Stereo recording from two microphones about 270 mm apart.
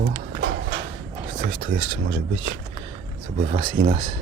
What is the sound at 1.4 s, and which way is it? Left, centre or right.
Speech, right.